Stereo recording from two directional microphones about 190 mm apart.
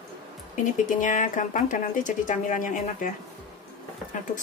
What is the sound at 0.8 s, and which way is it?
Speech, 40° left (ahead or behind).